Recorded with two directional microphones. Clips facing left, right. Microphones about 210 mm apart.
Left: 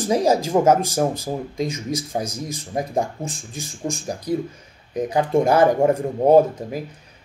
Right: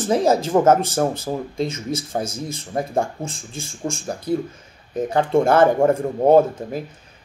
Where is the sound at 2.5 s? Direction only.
15° left (ahead or behind).